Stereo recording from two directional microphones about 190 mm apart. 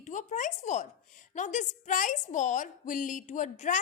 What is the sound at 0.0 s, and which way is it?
A woman's voice, 40° left (ahead or behind).